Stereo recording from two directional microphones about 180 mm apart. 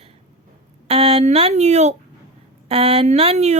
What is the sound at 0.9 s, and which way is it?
A child's voice, 35° right (ahead or behind).